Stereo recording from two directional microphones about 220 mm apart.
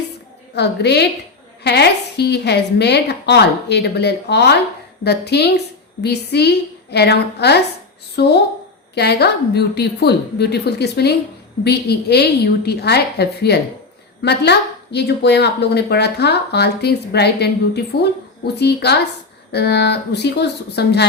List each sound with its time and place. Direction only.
0.5 s a woman's voice: 50° left (ahead or behind)